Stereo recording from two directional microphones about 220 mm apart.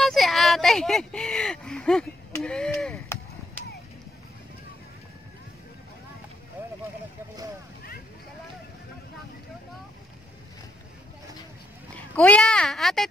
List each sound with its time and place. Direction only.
0.0 s a sound: centre (ahead or behind)
3.6 s chop: 5° left (ahead or behind)
12.2 s speech: 5° left (ahead or behind)